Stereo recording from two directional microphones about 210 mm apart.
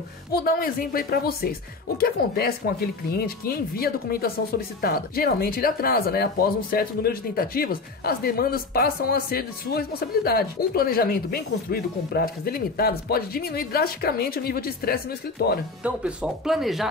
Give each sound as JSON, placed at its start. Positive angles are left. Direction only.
{"t": 0.4, "sound": "speech", "side_deg": 45}
{"t": 15.8, "sound": "speech", "side_deg": -5}